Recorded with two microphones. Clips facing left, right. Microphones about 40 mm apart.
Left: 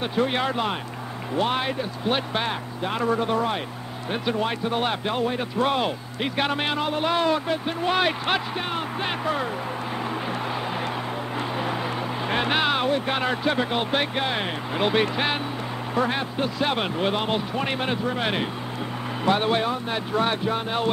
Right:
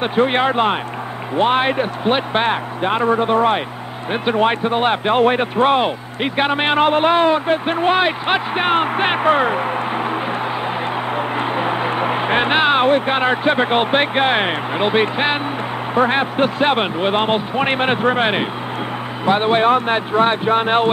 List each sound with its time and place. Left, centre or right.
0.0 s speech: right
5.2 s speech: right
5.6 s speech: right
11.3 s vehicle: right
12.1 s speech: right
14.8 s speech: right
19.6 s speech: right
20.5 s speech: right